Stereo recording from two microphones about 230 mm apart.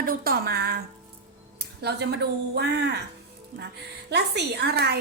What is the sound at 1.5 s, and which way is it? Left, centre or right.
A woman's voice, right.